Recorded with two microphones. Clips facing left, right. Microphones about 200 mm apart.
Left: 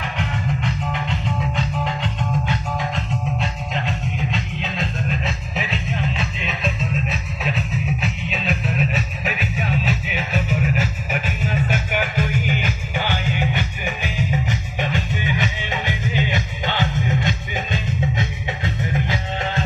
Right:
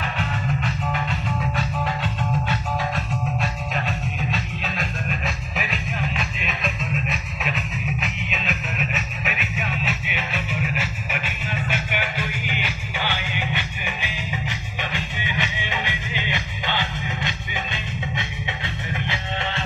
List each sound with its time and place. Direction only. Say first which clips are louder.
0.2 s music: left 3 dB; 20° left (ahead or behind); by 19.6 s 40° left (ahead or behind)